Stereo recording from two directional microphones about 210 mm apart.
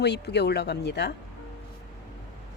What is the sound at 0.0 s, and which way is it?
Speech, 55° left (ahead or behind).